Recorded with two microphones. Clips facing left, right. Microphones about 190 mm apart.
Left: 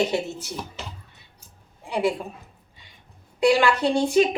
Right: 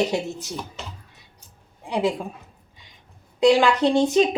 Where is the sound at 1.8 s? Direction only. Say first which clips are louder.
Right 1 dB; 15° right (ahead or behind).